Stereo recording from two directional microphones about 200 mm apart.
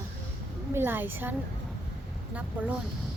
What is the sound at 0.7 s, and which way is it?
Female singing, 10° right (ahead or behind).